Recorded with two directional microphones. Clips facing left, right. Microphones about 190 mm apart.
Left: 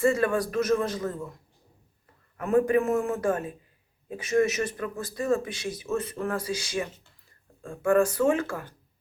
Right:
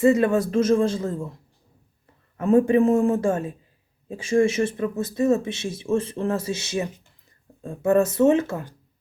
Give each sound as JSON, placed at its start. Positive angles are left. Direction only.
{"t": 0.0, "sound": "speech", "side_deg": -20}
{"t": 2.4, "sound": "speech", "side_deg": -25}